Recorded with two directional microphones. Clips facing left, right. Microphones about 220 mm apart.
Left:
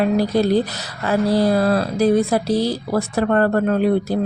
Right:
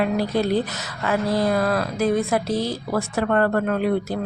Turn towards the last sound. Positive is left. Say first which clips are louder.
# left 4 dB
turn(degrees=35)  # may be behind; listen again after turning